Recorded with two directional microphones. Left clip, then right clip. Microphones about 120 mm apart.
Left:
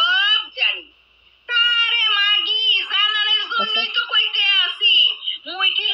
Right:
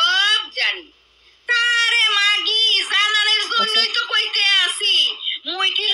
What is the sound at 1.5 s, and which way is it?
Child singing, 25° right (ahead or behind).